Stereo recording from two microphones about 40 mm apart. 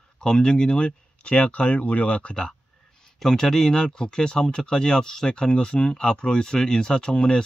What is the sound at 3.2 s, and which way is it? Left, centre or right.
Speech, centre.